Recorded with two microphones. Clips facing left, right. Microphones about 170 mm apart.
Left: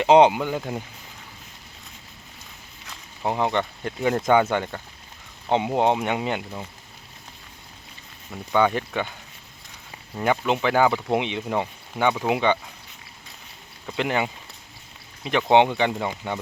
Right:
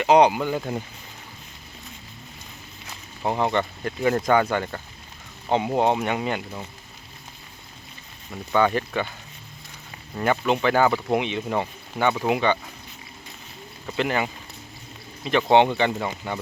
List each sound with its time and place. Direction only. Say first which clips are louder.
0.0 s speech: left 2 dB; 25° left (ahead or behind)
0.6 s speech: right 1 dB; 5° left (ahead or behind)
3.2 s speech: even; 15° left (ahead or behind)
5.5 s speech: even; 20° left (ahead or behind)
8.5 s speech: even; 10° left (ahead or behind)
10.2 s speech: even; 15° left (ahead or behind)
13.9 s speech: even; 15° left (ahead or behind)